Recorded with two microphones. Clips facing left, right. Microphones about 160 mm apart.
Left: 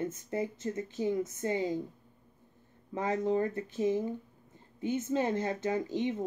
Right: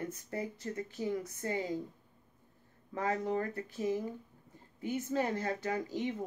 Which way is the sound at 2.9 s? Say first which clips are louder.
Left 4 dB; 20° left (ahead or behind).